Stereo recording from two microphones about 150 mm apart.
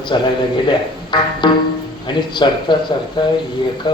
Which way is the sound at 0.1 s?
30° left (ahead or behind).